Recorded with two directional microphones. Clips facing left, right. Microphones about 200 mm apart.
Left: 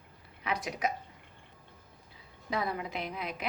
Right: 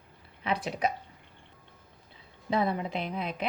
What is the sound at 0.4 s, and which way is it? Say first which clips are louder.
Speech: right 3 dB; 30° right (ahead or behind).